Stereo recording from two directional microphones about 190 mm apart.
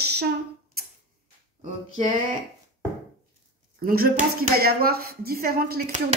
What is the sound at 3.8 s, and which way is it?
Speech, 50° right (ahead or behind).